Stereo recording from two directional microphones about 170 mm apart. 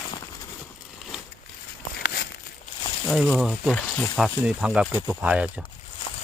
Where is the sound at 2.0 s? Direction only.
70° left (ahead or behind).